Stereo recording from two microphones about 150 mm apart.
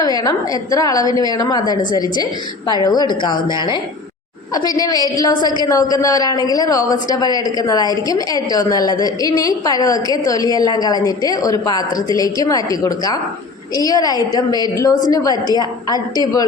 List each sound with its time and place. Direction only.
0.0 s a woman's voice: 25° left (ahead or behind)